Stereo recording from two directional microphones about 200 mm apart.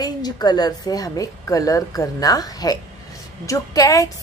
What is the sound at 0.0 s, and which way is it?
A woman's voice, 20° left (ahead or behind).